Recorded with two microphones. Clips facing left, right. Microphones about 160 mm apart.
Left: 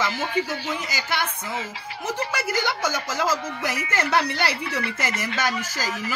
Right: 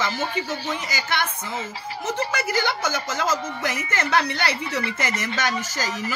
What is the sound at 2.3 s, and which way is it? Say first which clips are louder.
Speech: right 1 dB; 10° left (ahead or behind).